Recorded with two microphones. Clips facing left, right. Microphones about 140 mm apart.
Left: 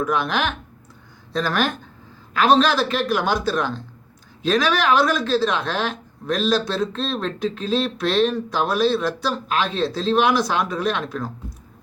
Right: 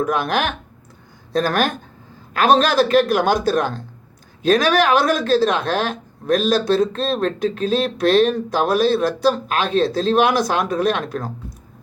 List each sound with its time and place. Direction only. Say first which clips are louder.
0.0 s speech: right 2 dB; 45° right (ahead or behind)